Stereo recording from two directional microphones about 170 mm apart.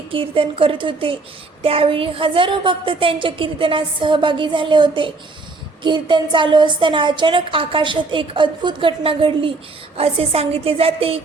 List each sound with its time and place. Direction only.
0.1 s a woman's voice: 30° right (ahead or behind)